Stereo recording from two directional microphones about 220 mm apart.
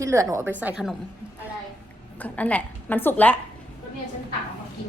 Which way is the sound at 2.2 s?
5° left (ahead or behind).